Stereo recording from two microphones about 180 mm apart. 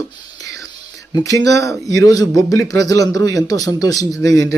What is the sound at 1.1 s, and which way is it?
A man's voice, 20° left (ahead or behind).